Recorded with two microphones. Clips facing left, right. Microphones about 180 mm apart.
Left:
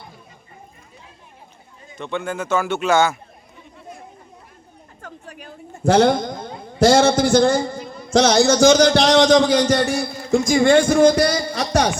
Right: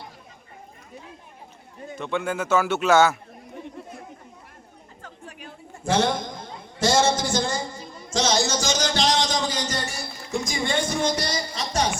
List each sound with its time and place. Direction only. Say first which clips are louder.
2.0 s a man's voice: left 1 dB; 5° right (ahead or behind)
5.0 s chatter: left 4 dB; 40° left (ahead or behind)
5.8 s a man's voice: left 8 dB; 65° left (ahead or behind)